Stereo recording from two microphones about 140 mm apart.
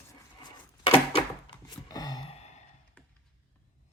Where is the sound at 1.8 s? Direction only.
25° left (ahead or behind).